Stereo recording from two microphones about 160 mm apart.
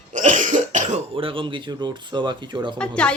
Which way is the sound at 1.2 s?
35° right (ahead or behind).